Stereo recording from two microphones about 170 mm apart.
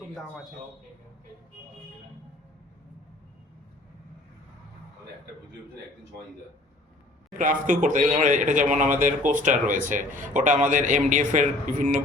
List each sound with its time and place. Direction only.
0.1 s a man's voice: centre (ahead or behind)
7.3 s speech: 50° right (ahead or behind)